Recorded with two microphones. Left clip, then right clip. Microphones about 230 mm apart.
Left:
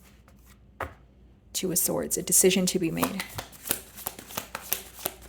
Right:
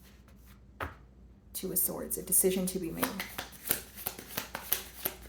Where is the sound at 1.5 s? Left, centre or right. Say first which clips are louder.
Left 9 dB; left.